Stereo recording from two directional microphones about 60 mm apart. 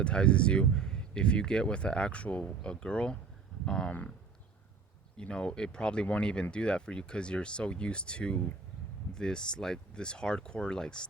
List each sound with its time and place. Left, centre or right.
0.0 s speech: centre
5.1 s speech: centre